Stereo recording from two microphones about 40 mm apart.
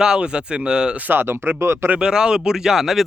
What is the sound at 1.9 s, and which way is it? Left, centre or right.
Speech, right.